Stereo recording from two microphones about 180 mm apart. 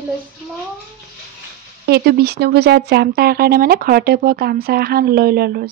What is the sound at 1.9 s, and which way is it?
Speech, 60° right (ahead or behind).